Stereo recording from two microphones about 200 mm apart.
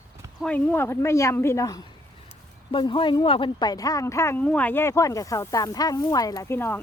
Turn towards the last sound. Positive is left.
turn(degrees=10)  # may be behind; listen again after turning